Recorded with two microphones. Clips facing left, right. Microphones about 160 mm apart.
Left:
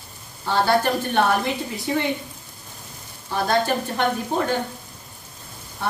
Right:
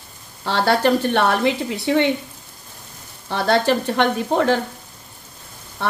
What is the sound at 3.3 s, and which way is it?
Frying, 80° right.